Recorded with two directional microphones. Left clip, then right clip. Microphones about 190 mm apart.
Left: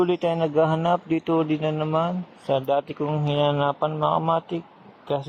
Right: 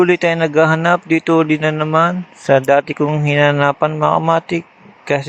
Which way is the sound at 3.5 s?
65° right (ahead or behind).